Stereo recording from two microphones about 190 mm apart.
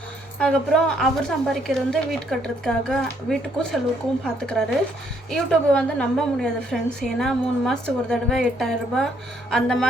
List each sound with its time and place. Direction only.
0.3 s a woman's voice: 5° left (ahead or behind)